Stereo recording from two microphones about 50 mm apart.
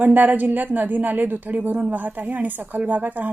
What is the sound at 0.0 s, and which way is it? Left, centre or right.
A woman's voice, right.